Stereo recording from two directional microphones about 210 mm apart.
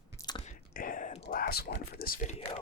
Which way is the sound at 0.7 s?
40° left (ahead or behind).